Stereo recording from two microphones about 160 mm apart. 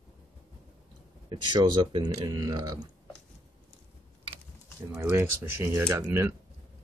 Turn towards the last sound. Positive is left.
turn(degrees=-15)  # may be behind; listen again after turning